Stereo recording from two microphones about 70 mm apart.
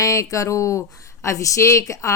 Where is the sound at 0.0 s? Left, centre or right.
Left.